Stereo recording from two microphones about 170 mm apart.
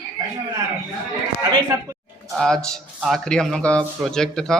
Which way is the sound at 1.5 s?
20° right (ahead or behind).